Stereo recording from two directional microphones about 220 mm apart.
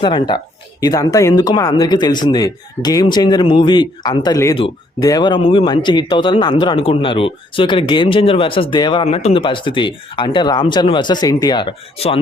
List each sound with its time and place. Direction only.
0.0 s speech: 20° left (ahead or behind)